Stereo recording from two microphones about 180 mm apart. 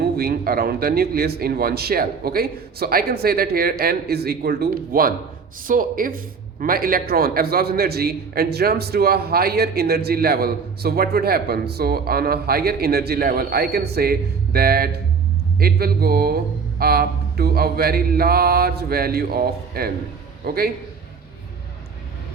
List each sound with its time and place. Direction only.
0.0 s speech: 60° right (ahead or behind)